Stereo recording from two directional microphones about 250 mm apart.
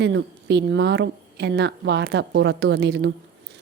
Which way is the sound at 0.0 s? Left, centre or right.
Right.